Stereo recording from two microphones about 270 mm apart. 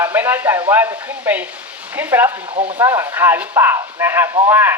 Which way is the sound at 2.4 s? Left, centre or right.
Right.